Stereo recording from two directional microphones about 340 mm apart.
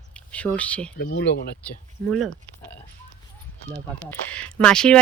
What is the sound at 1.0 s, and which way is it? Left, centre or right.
Speech, left.